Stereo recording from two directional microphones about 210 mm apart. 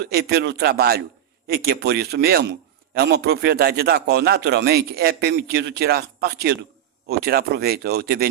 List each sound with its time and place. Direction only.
0.0 s a man's voice: 50° right (ahead or behind)